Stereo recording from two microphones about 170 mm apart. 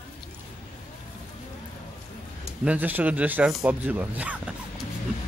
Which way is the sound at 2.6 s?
10° right (ahead or behind).